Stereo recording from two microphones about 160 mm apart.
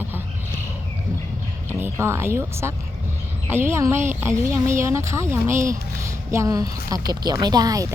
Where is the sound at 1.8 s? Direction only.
15° right (ahead or behind).